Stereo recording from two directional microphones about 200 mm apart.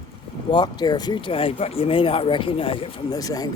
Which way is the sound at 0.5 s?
20° left (ahead or behind).